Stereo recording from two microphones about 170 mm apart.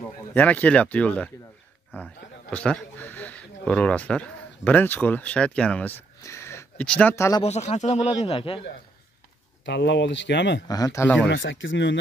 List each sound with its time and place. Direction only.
0.3 s a man's voice: 10° left (ahead or behind)
7.4 s speech: 40° left (ahead or behind)
9.7 s speech: 90° left
10.7 s speech: 20° left (ahead or behind)
11.2 s speech: 90° left